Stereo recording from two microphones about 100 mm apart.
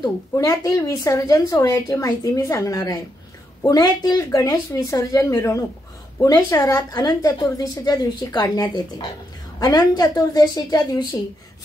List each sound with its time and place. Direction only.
0.4 s a woman's voice: 35° left (ahead or behind)